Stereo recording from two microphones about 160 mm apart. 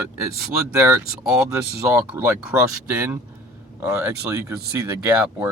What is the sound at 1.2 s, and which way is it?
Speech, 5° right (ahead or behind).